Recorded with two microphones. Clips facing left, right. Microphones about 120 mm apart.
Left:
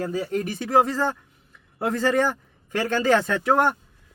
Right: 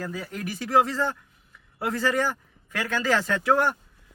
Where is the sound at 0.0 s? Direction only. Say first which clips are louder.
Left 8 dB; 30° left (ahead or behind).